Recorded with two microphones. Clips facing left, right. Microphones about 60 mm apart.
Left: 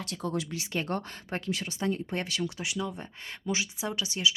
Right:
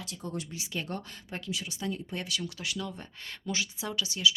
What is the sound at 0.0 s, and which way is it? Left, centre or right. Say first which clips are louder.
Speech: left 5 dB; left.